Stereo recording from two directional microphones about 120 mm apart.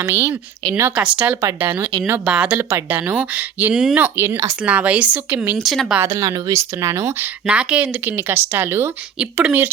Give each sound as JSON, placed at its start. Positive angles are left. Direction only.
{"t": 0.0, "sound": "speech", "side_deg": -20}
{"t": 0.9, "sound": "speech", "side_deg": -10}
{"t": 5.5, "sound": "speech", "side_deg": 0}
{"t": 6.0, "sound": "speech", "side_deg": -30}
{"t": 7.4, "sound": "speech", "side_deg": -10}